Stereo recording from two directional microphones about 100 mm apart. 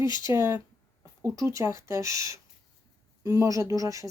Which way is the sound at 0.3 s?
30° right (ahead or behind).